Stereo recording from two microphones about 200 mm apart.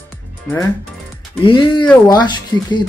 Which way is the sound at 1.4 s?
25° left (ahead or behind).